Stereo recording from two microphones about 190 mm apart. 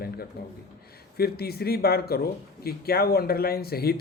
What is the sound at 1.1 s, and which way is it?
A man's voice, 55° left (ahead or behind).